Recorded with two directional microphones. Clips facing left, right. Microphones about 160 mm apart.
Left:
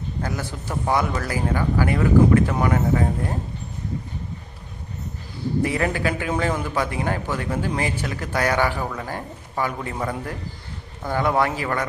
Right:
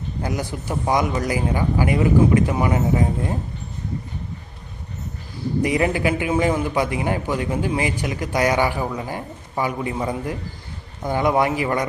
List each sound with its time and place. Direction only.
0.2 s a man's voice: 15° right (ahead or behind)
5.6 s a man's voice: 15° right (ahead or behind)